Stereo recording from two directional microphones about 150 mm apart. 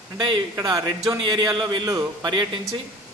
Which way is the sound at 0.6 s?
25° right (ahead or behind).